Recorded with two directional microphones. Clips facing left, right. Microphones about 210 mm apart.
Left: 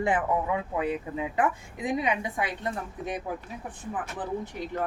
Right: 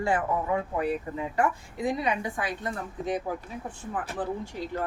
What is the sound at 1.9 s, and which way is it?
Speech, 20° left (ahead or behind).